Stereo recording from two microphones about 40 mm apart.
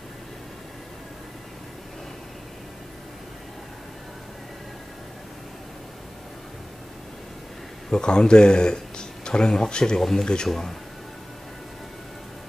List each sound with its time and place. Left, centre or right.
7.9 s speech: left